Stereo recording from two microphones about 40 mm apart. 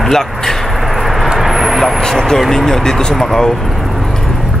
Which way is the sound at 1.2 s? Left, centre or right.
Centre.